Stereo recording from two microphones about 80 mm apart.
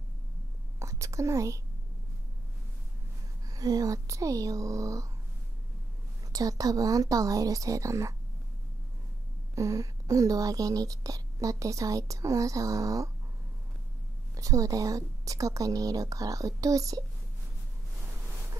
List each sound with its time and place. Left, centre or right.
0.7 s whispering: right
3.4 s speech: right
6.3 s speech: right
9.6 s speech: right
14.3 s speech: right